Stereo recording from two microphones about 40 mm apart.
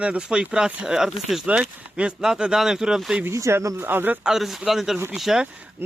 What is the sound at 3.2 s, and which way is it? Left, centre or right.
Speech, right.